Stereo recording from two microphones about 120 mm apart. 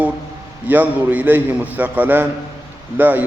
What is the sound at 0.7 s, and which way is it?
A man's voice, 15° right (ahead or behind).